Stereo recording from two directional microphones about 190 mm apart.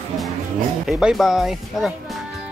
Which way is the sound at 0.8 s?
Centre (ahead or behind).